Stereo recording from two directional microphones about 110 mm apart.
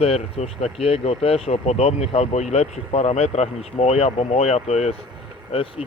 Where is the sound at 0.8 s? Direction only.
65° left (ahead or behind); by 4.9 s 85° left.